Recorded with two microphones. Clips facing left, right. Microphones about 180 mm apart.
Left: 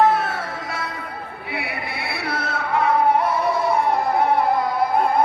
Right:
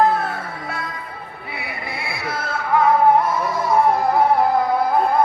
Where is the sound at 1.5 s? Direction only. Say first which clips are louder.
Left 2 dB; 70° left (ahead or behind).